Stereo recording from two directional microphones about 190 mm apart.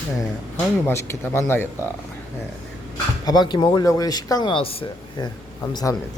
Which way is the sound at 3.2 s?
20° left (ahead or behind).